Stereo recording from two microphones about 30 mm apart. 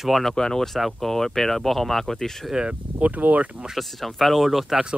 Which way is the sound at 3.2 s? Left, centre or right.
Right.